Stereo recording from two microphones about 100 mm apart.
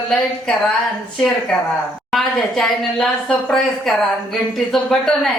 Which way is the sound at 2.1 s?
Centre (ahead or behind).